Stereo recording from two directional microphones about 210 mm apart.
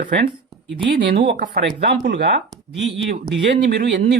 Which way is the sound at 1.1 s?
50° right (ahead or behind).